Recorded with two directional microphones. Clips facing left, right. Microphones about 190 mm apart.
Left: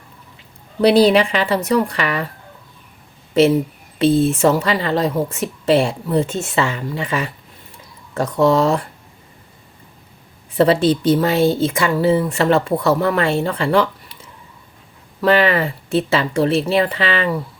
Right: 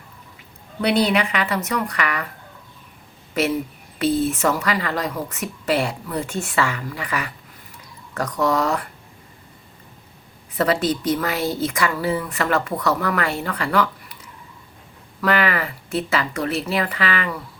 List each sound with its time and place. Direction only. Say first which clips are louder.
0.8 s a woman's voice: left 7 dB; 35° left (ahead or behind)
3.3 s speech: left 8 dB; 25° left (ahead or behind)
10.6 s speech: left 6 dB; 30° left (ahead or behind)